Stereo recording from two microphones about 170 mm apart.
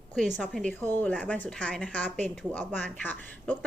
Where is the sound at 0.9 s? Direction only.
10° left (ahead or behind).